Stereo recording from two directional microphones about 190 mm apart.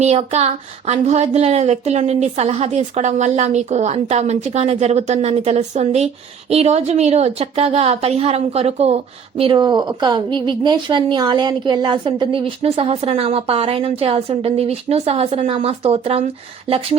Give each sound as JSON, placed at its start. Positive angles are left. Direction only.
{"t": 0.0, "sound": "a woman's voice", "side_deg": -35}